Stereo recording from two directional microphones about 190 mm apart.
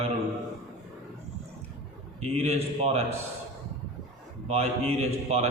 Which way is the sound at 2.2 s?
35° right (ahead or behind).